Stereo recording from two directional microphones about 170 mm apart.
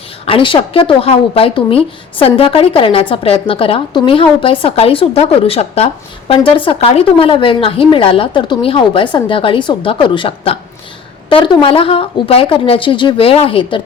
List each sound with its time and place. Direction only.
0.3 s a woman's voice: 30° left (ahead or behind)